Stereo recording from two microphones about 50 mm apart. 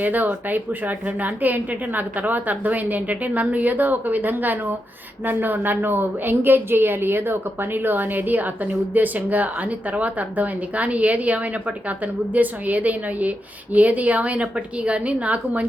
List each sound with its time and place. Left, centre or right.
0.0 s a woman's voice: right